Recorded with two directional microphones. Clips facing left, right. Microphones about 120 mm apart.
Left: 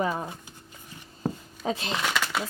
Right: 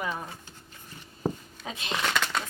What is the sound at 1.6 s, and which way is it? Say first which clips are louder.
Speech: left 12 dB; 35° left (ahead or behind).